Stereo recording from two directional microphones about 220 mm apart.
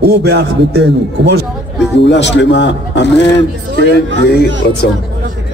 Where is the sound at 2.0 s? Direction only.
50° left (ahead or behind).